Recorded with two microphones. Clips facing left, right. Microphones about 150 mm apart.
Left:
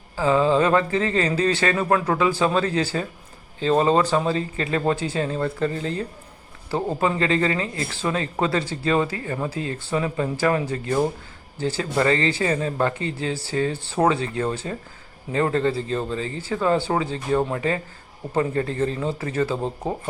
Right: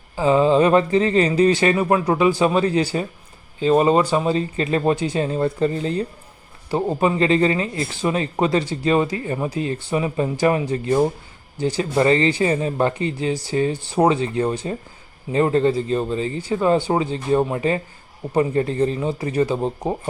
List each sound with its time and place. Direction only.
0.2 s speech: 20° right (ahead or behind)